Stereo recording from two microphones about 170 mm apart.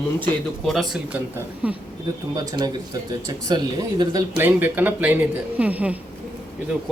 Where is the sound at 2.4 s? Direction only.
20° right (ahead or behind).